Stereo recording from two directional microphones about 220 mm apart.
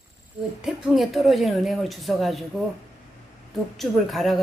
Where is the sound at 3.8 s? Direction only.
Centre (ahead or behind).